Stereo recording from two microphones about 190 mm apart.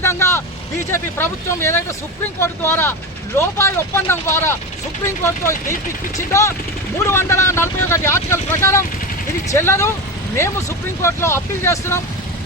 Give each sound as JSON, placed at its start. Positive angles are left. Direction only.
{"t": 0.0, "sound": "vehicle", "side_deg": 15}
{"t": 0.9, "sound": "speech", "side_deg": 15}
{"t": 11.0, "sound": "speech", "side_deg": 15}